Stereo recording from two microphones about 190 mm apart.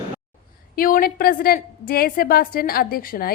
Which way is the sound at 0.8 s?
50° left (ahead or behind).